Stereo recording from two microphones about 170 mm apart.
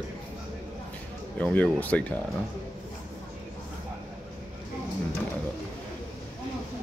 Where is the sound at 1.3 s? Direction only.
10° left (ahead or behind).